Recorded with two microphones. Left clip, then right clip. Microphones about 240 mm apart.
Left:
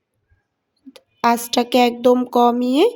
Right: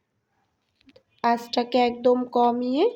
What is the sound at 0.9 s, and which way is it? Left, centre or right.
Speech, left.